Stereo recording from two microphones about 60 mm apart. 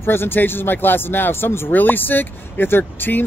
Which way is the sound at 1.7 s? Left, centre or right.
Left.